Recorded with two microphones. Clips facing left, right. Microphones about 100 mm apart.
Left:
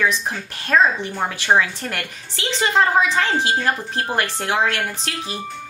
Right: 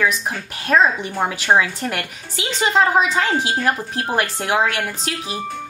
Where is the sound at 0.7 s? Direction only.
15° right (ahead or behind).